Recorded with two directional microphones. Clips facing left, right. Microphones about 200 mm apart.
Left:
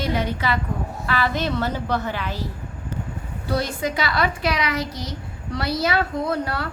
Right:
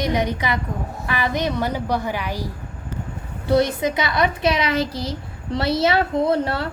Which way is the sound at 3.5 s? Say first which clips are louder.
Right 6 dB; 20° right (ahead or behind).